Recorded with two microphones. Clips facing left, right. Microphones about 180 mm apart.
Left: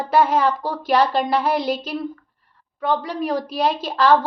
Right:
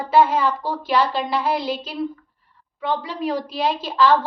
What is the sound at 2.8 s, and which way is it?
A woman's voice, 40° left (ahead or behind).